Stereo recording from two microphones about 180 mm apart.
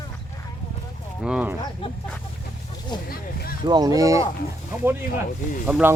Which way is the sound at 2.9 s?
25° left (ahead or behind).